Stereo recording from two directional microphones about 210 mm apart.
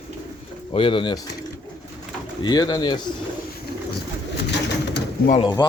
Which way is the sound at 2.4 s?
20° left (ahead or behind).